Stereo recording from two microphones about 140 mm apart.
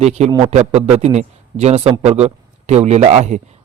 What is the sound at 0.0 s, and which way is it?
Speech, 55° right (ahead or behind).